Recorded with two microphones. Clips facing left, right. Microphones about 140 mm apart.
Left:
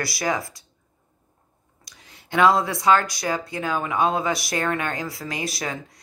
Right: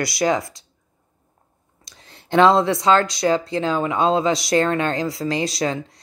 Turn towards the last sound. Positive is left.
turn(degrees=-25)  # may be behind; listen again after turning